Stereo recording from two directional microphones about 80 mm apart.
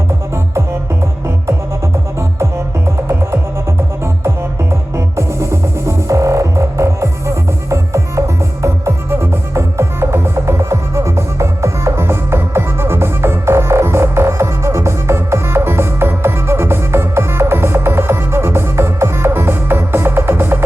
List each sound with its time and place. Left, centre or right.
4.7 s music: right